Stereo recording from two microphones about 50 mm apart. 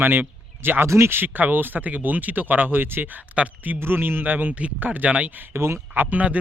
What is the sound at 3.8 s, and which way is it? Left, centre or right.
Speech, right.